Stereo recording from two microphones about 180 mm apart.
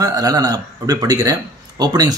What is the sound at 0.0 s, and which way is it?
Speech, 20° right (ahead or behind).